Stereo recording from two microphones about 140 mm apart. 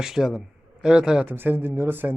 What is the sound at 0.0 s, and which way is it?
Speech, 5° right (ahead or behind).